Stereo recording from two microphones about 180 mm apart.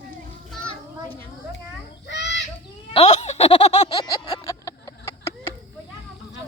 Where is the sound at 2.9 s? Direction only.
35° left (ahead or behind).